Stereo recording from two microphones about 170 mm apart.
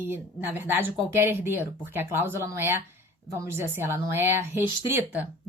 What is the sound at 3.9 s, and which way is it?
A woman's voice, 10° right (ahead or behind).